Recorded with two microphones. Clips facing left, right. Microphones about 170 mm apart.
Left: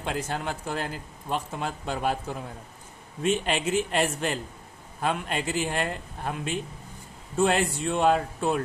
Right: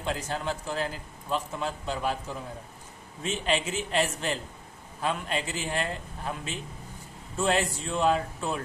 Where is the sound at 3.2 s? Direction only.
55° left (ahead or behind).